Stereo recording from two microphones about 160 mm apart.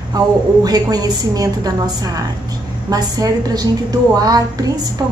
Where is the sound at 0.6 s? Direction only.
25° right (ahead or behind).